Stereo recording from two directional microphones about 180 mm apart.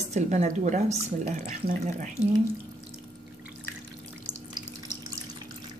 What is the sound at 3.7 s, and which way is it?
Drip, 15° left (ahead or behind).